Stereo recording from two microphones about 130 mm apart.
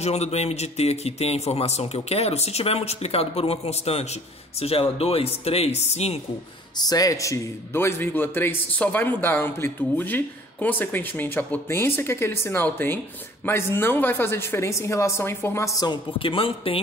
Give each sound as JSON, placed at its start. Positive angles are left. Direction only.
{"t": 0.0, "sound": "speech", "side_deg": 55}
{"t": 6.8, "sound": "a man's voice", "side_deg": 30}
{"t": 16.2, "sound": "speech", "side_deg": 45}